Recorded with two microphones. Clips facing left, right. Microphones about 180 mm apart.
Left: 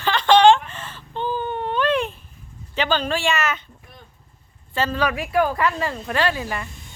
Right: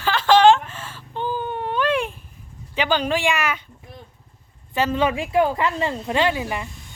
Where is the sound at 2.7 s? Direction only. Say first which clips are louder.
Right 1 dB; 15° right (ahead or behind).